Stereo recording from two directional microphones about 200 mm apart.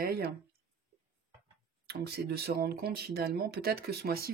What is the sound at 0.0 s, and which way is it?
Speech, 50° right (ahead or behind).